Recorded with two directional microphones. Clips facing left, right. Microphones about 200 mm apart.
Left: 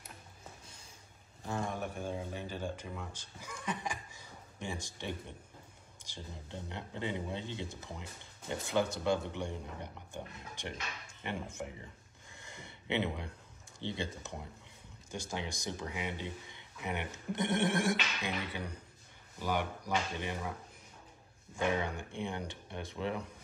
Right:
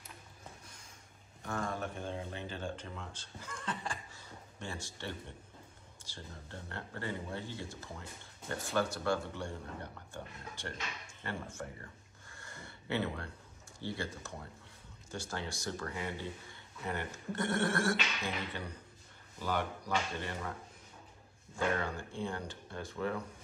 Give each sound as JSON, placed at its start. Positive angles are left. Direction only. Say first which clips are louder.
{"t": 1.4, "sound": "speech", "louder": "left 1 dB", "side_deg": 25}
{"t": 11.2, "sound": "a sound", "louder": "left 2 dB", "side_deg": 20}
{"t": 13.7, "sound": "speech", "louder": "left 1 dB", "side_deg": 20}
{"t": 21.5, "sound": "speech", "louder": "left 1 dB", "side_deg": 15}